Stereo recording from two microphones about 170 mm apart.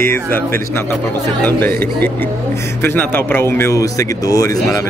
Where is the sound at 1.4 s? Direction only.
10° left (ahead or behind).